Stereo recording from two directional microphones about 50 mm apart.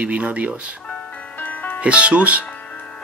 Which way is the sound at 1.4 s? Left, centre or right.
Left.